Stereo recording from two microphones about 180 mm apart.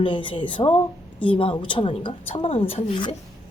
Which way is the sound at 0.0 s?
30° left (ahead or behind).